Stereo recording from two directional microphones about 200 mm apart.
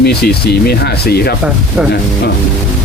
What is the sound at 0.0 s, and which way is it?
Speech, 50° left (ahead or behind).